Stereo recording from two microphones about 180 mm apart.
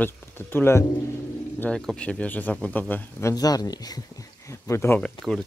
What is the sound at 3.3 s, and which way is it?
Speech, 20° left (ahead or behind).